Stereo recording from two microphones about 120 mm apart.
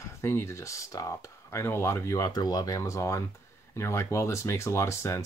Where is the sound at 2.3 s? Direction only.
35° left (ahead or behind).